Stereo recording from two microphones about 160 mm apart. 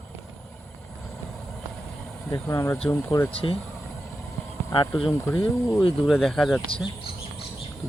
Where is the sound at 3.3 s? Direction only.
35° left (ahead or behind).